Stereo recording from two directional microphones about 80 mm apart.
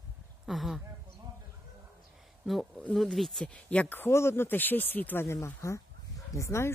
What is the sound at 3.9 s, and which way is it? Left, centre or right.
Speech, left.